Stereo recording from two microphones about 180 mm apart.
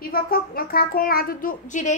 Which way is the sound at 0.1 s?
55° left (ahead or behind).